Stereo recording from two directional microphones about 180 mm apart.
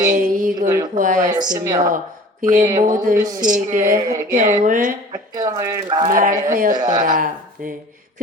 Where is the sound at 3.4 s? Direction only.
45° right (ahead or behind).